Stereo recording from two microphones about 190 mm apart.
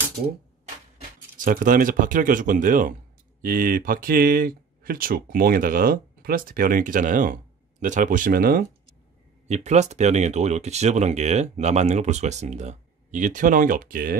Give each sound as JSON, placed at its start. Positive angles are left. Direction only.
{"t": 0.9, "sound": "speech", "side_deg": -45}
{"t": 9.5, "sound": "speech", "side_deg": -35}